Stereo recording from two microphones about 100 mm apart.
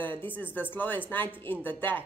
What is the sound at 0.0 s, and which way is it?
A woman's voice, 20° left (ahead or behind).